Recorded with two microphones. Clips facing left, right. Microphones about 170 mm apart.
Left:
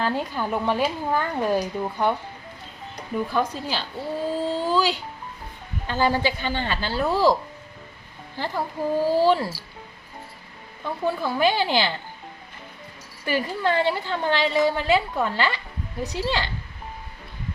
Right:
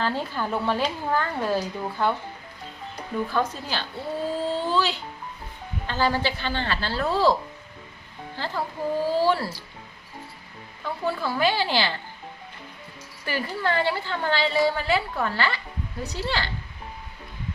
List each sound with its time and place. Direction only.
0.0 s a woman's voice: 15° left (ahead or behind)
3.3 s a woman's voice: 10° left (ahead or behind)
8.4 s a woman's voice: 15° left (ahead or behind)
10.8 s a woman's voice: 15° left (ahead or behind)
13.2 s a woman's voice: 15° left (ahead or behind)